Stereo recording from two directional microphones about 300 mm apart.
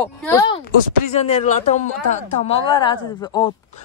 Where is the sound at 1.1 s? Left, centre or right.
Left.